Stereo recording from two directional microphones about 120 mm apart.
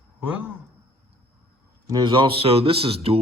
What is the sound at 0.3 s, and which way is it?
Speech, 10° right (ahead or behind).